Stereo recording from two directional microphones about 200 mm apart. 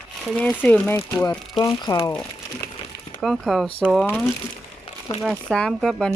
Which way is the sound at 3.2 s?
Centre (ahead or behind).